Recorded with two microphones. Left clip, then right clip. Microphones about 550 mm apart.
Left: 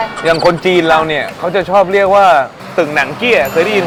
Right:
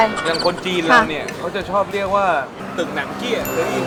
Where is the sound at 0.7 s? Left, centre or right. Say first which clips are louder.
Even; left.